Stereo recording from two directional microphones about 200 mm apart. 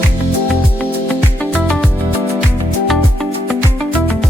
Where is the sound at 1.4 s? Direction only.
5° left (ahead or behind).